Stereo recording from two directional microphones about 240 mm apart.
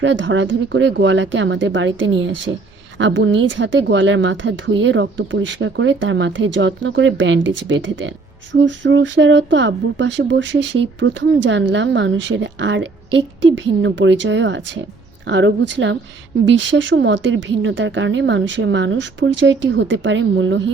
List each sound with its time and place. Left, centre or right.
0.0 s speech: right